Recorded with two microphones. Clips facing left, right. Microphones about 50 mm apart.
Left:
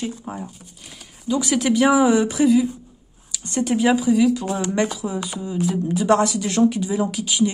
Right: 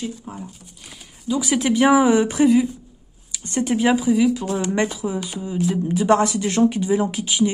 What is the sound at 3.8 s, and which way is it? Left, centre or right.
Speech, centre.